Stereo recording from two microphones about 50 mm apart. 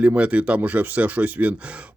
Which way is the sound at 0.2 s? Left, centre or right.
Right.